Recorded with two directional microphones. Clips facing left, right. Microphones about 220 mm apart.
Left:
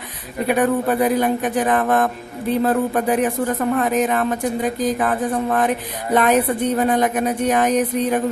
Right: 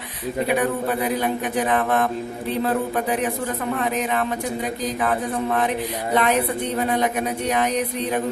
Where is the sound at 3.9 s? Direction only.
45° left (ahead or behind).